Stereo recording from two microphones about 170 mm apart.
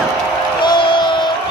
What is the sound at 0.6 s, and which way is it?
Crowd, 25° left (ahead or behind).